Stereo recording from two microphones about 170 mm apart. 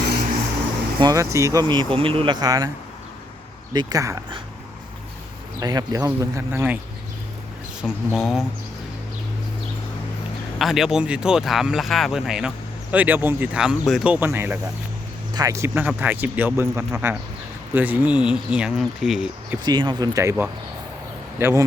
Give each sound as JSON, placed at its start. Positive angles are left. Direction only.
{"t": 0.9, "sound": "speech", "side_deg": -20}
{"t": 3.7, "sound": "speech", "side_deg": -25}
{"t": 5.5, "sound": "speech", "side_deg": -20}
{"t": 7.8, "sound": "speech", "side_deg": -5}
{"t": 10.6, "sound": "speech", "side_deg": 0}
{"t": 19.6, "sound": "speech", "side_deg": -25}
{"t": 21.3, "sound": "speech", "side_deg": -15}